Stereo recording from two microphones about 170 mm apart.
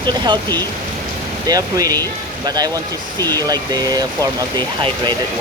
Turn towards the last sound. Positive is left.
turn(degrees=-25)  # may be behind; listen again after turning